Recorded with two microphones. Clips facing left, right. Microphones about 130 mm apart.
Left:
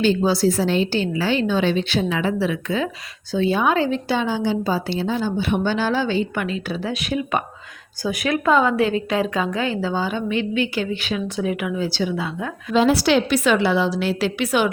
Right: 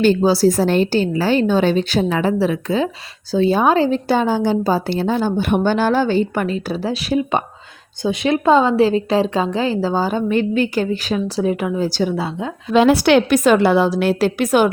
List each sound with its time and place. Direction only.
0.2 s a woman's voice: 35° right (ahead or behind)
12.7 s a woman's voice: 60° right (ahead or behind); by 14.7 s 45° right (ahead or behind)